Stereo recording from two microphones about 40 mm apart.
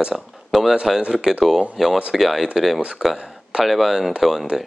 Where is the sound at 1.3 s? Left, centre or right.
Centre.